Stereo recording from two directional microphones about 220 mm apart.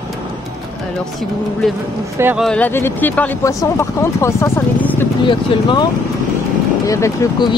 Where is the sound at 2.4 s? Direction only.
5° left (ahead or behind).